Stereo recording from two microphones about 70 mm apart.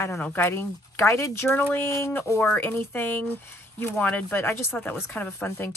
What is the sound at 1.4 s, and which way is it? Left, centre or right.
Speech, left.